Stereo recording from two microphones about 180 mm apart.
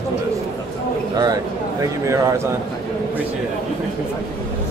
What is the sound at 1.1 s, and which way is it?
A man's voice, 20° right (ahead or behind).